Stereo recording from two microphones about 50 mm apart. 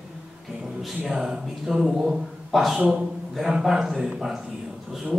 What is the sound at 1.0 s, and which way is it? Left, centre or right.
A man's voice, centre.